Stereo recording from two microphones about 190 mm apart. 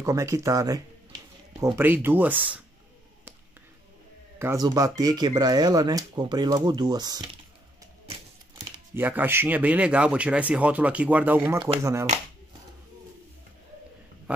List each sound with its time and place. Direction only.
0.0 s speech: 15° right (ahead or behind)
4.4 s speech: 15° right (ahead or behind)
8.9 s speech: 10° right (ahead or behind)